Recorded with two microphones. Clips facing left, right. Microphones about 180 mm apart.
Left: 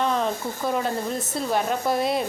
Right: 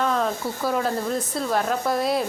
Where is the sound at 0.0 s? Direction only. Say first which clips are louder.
Right 1 dB; centre (ahead or behind).